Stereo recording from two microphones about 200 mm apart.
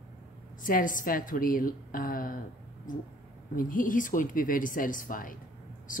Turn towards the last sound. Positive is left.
turn(degrees=40)  # may be behind; listen again after turning